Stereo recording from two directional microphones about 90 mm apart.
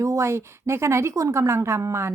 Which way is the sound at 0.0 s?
35° right (ahead or behind).